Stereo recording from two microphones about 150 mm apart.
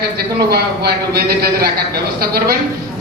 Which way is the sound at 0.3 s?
90° right.